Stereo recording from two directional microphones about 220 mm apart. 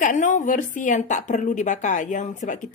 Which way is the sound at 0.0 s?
35° left (ahead or behind).